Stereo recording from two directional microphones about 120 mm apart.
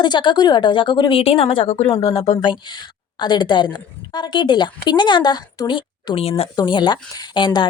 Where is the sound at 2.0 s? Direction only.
35° left (ahead or behind); by 6.5 s 55° left (ahead or behind).